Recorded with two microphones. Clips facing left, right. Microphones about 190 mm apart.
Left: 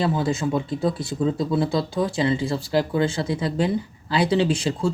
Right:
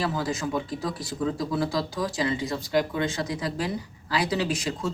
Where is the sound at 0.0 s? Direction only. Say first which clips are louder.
Left 5 dB; 25° left (ahead or behind).